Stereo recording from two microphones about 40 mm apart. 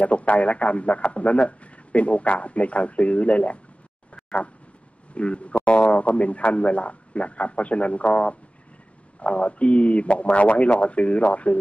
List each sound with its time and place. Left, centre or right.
0.0 s a man's voice: left
4.1 s a sound: left
5.1 s a man's voice: left